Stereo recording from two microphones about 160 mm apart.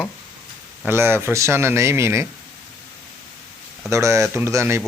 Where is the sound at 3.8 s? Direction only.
20° right (ahead or behind).